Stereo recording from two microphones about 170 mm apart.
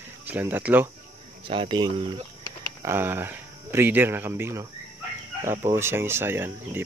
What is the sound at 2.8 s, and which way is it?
Speech, 15° right (ahead or behind).